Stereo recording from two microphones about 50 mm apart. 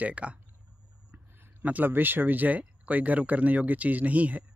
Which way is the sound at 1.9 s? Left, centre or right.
Right.